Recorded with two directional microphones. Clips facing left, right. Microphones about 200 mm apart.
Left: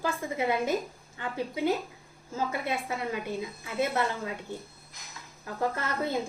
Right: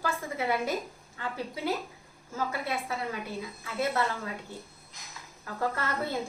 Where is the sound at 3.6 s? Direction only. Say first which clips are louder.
Left 1 dB; 20° left (ahead or behind).